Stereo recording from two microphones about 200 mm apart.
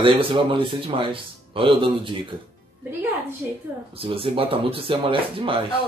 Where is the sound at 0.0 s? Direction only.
25° right (ahead or behind).